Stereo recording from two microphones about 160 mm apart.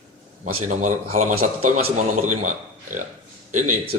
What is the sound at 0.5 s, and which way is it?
A man's voice, 50° right (ahead or behind).